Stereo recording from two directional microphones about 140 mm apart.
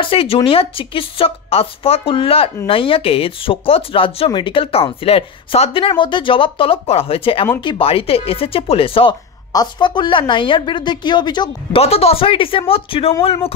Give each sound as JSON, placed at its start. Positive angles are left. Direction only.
{"t": 0.0, "sound": "speech", "side_deg": 40}
{"t": 11.8, "sound": "speech", "side_deg": 45}